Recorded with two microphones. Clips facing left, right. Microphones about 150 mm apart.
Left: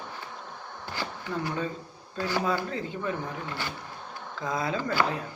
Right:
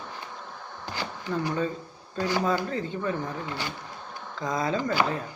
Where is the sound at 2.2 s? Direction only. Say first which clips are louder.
Right 2 dB; 15° right (ahead or behind).